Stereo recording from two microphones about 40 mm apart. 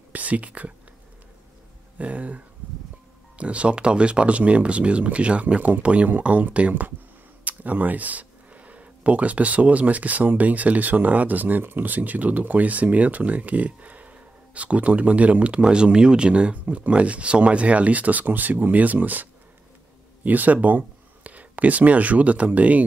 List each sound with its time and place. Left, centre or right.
0.1 s speech: right
2.0 s speech: right
20.2 s speech: right